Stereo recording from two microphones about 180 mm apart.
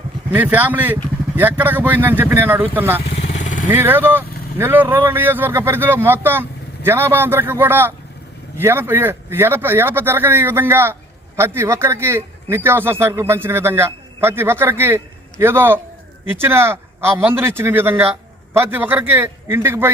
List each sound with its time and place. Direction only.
0.3 s speech: 10° right (ahead or behind)
3.2 s vehicle: 40° left (ahead or behind)
3.7 s speech: 10° right (ahead or behind)